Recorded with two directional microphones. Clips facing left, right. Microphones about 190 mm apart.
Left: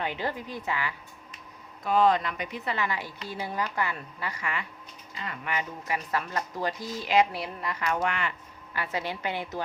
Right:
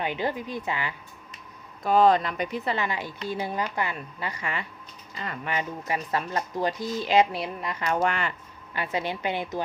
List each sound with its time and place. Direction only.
0.0 s a woman's voice: 15° right (ahead or behind)
1.8 s speech: 35° right (ahead or behind)
8.7 s speech: 20° right (ahead or behind)